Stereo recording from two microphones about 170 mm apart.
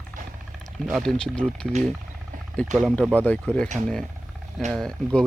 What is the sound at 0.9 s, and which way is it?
Speech, centre (ahead or behind).